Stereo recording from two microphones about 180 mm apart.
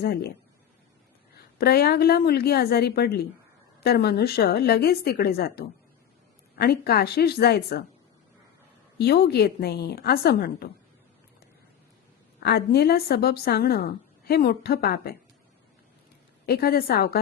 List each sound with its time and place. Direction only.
0.0 s speech: 60° left (ahead or behind)
1.5 s speech: 60° left (ahead or behind)
9.0 s speech: 65° left (ahead or behind)
12.4 s speech: 65° left (ahead or behind)
16.5 s speech: 55° left (ahead or behind)